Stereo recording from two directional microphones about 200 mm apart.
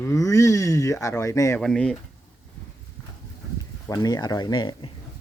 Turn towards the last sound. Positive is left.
turn(degrees=20)  # may be behind; listen again after turning